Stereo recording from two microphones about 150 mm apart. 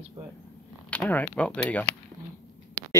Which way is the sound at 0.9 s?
10° left (ahead or behind).